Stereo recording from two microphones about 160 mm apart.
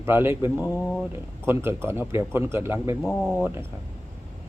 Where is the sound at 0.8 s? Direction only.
Centre (ahead or behind).